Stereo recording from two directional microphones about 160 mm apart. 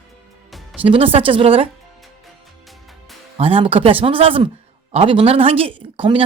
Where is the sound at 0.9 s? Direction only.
35° right (ahead or behind).